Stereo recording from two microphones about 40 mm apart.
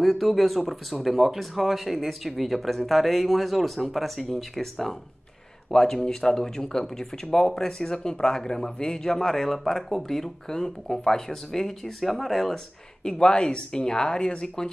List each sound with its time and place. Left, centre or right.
0.0 s speech: centre
13.0 s speech: left